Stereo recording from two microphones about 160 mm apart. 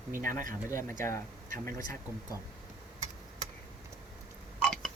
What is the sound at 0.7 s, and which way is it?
Speech, 15° left (ahead or behind).